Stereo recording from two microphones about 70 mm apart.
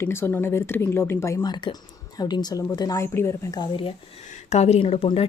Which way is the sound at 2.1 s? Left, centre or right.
Left.